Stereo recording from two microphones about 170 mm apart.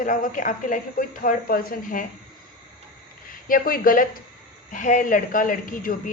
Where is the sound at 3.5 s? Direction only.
60° left (ahead or behind).